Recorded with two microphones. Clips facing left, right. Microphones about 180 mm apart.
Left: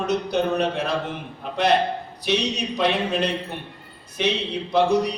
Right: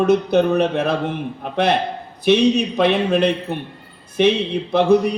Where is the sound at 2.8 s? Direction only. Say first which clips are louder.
Right 4 dB; 55° right (ahead or behind).